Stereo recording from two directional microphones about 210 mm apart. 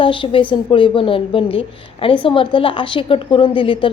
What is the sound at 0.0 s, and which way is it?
A woman's voice, 25° left (ahead or behind).